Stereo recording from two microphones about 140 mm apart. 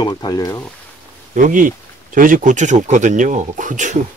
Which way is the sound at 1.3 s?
65° right (ahead or behind).